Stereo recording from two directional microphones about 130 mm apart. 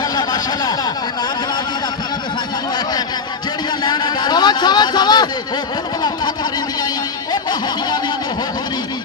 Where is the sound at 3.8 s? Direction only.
35° left (ahead or behind).